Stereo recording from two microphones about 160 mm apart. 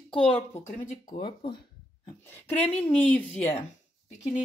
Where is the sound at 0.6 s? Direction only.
55° left (ahead or behind).